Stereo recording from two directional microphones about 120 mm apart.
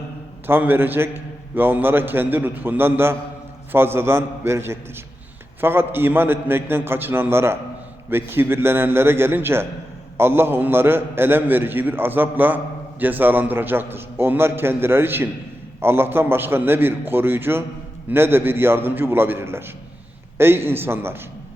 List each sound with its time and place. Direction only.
0.4 s a man's voice: 15° right (ahead or behind)